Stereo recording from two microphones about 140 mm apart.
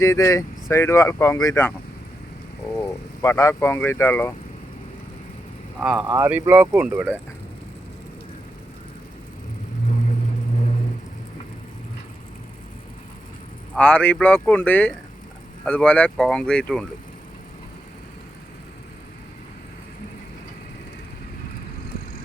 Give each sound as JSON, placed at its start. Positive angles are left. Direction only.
{"t": 0.0, "sound": "speech", "side_deg": 20}
{"t": 2.7, "sound": "speech", "side_deg": 20}
{"t": 5.8, "sound": "speech", "side_deg": -5}
{"t": 13.7, "sound": "speech", "side_deg": 10}